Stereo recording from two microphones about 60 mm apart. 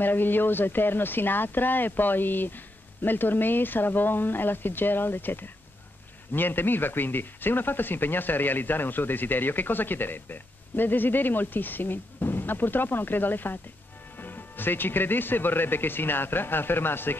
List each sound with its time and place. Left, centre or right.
0.0 s speech: left